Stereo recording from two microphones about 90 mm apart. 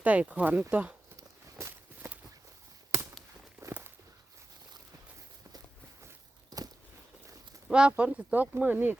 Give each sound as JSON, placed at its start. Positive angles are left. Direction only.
{"t": 0.0, "sound": "speech", "side_deg": -15}
{"t": 7.7, "sound": "speech", "side_deg": -10}